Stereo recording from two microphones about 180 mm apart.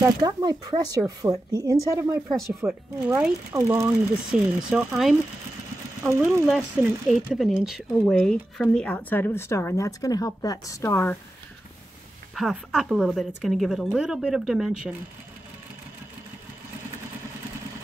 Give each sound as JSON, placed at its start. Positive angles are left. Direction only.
{"t": 0.0, "sound": "speech", "side_deg": -20}
{"t": 4.3, "sound": "a woman's voice", "side_deg": -5}
{"t": 6.0, "sound": "speech", "side_deg": -15}
{"t": 6.4, "sound": "speech", "side_deg": 0}
{"t": 12.4, "sound": "a woman's voice", "side_deg": 0}